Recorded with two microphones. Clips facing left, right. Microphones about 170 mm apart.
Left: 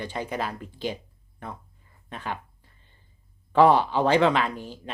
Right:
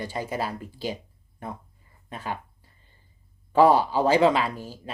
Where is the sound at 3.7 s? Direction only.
10° right (ahead or behind).